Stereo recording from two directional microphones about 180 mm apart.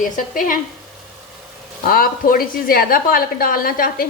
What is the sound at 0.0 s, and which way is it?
Speech, 50° left (ahead or behind).